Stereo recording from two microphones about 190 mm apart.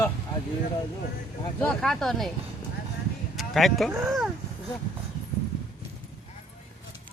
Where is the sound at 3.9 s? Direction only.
15° right (ahead or behind).